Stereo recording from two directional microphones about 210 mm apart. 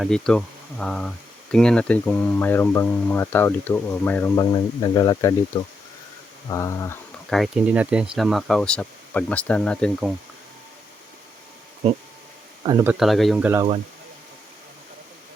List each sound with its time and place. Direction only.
0.0 s speech: 5° left (ahead or behind)
7.3 s speech: centre (ahead or behind)
12.6 s speech: 20° right (ahead or behind)
12.9 s speech: centre (ahead or behind)